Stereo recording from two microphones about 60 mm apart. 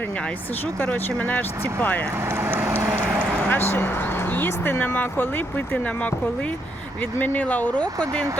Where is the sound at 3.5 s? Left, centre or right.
Left.